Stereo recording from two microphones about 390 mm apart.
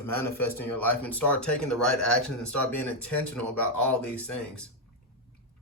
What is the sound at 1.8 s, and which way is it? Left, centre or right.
Speech, left.